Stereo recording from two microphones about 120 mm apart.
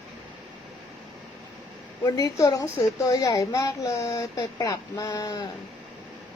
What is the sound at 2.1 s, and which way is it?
A woman's voice, 30° left (ahead or behind).